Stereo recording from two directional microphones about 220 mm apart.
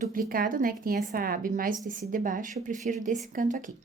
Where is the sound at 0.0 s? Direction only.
40° right (ahead or behind).